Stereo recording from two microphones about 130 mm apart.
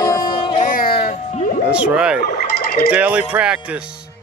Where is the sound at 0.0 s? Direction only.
30° left (ahead or behind).